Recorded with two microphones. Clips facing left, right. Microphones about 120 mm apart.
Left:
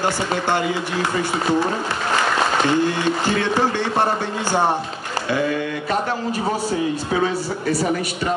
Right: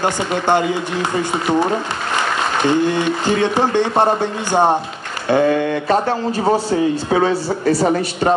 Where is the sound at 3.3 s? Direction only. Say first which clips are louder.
Right 5 dB; 20° right (ahead or behind).